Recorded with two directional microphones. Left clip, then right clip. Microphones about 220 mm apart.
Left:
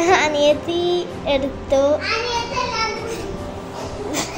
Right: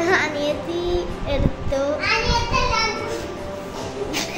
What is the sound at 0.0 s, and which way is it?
Child singing, 30° left (ahead or behind).